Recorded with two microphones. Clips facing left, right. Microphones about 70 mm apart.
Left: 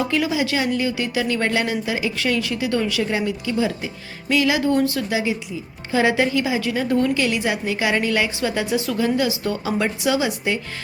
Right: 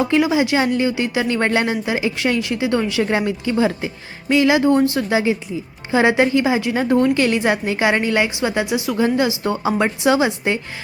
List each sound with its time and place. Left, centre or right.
0.0 s a woman's voice: right
3.0 s a woman's voice: right; by 9.0 s centre
9.0 s a woman's voice: right